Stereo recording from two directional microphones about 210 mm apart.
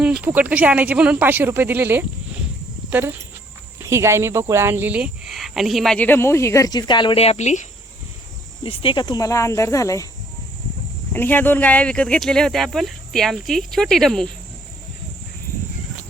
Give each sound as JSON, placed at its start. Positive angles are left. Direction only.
{"t": 0.2, "sound": "speech", "side_deg": -5}
{"t": 11.1, "sound": "speech", "side_deg": 10}